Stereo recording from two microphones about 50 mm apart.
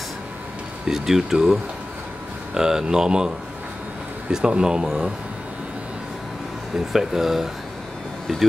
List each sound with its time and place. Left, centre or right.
0.8 s speech: centre
6.7 s speech: centre